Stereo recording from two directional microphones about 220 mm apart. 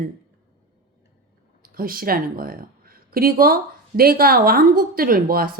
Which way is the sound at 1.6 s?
40° right (ahead or behind).